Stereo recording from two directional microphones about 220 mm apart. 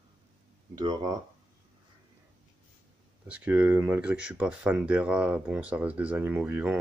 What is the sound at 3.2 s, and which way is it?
Speech, 5° right (ahead or behind).